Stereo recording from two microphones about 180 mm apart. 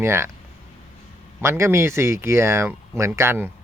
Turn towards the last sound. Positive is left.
turn(degrees=-15)  # may be behind; listen again after turning